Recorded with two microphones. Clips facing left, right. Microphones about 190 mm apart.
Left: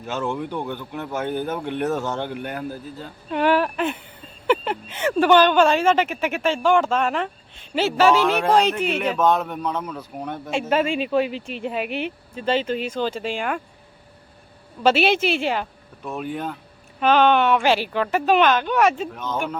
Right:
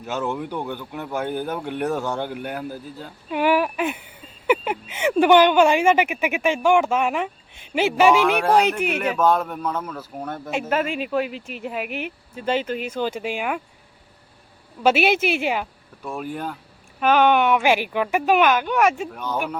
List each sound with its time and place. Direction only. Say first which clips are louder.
0.3 s speech: left 1 dB; 10° right (ahead or behind)
0.9 s speech: even; centre (ahead or behind)
2.0 s a sound: even; 15° right (ahead or behind)
5.1 s speech: right 1 dB; 15° right (ahead or behind)
10.7 s speech: left 3 dB; 25° left (ahead or behind)
12.4 s speech: left 1 dB; 10° right (ahead or behind)
14.8 s speech: even; 10° right (ahead or behind)